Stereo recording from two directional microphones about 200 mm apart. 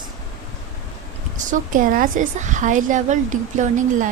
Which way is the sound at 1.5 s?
40° right (ahead or behind).